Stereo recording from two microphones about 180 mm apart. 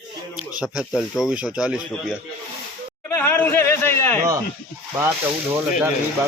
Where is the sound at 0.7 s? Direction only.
Centre (ahead or behind).